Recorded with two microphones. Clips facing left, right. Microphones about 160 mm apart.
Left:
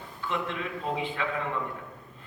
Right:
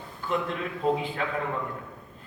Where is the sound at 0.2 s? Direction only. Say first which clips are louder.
Right 4 dB; 40° right (ahead or behind).